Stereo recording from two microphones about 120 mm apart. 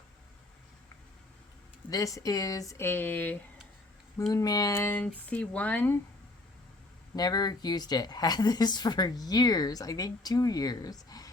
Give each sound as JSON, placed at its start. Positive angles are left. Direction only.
{"t": 1.9, "sound": "speech", "side_deg": 30}
{"t": 4.3, "sound": "speech", "side_deg": 30}
{"t": 4.8, "sound": "speech", "side_deg": 15}
{"t": 7.2, "sound": "speech", "side_deg": 35}